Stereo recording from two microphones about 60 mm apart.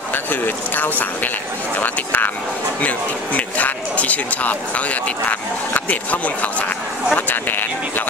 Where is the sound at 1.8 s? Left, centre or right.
Left.